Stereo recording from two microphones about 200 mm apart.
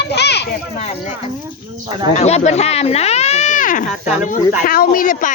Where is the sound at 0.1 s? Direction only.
55° left (ahead or behind).